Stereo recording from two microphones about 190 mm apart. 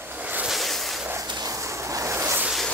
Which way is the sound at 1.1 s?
20° right (ahead or behind).